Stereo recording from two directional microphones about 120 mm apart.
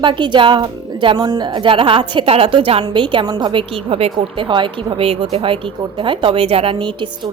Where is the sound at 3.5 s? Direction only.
50° right (ahead or behind).